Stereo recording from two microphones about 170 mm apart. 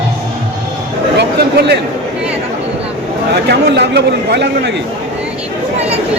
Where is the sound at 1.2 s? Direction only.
80° right.